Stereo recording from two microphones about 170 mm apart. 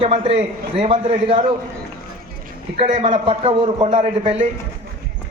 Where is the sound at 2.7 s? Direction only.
35° right (ahead or behind).